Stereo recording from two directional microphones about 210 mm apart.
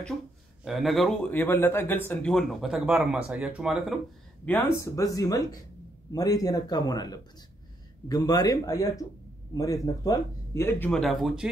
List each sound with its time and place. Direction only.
0.7 s speech: centre (ahead or behind)
4.5 s speech: 10° left (ahead or behind)